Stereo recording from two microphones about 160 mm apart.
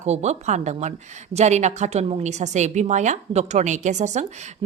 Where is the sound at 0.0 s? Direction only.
45° right (ahead or behind).